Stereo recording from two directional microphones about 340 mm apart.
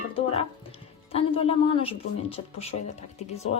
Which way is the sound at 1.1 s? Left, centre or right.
Centre.